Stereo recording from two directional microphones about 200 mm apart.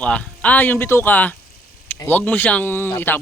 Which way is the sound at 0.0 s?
5° left (ahead or behind).